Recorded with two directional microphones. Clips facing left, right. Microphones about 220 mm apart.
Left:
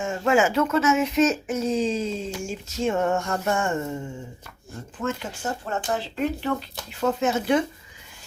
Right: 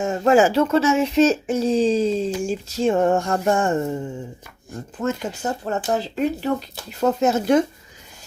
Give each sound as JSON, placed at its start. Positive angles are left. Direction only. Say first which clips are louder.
{"t": 0.0, "sound": "speech", "louder": "right 5 dB", "side_deg": -40}
{"t": 5.0, "sound": "speech", "louder": "right 4 dB", "side_deg": -40}